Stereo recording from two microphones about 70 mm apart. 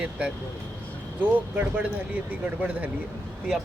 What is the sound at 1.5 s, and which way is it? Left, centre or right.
Speech, right.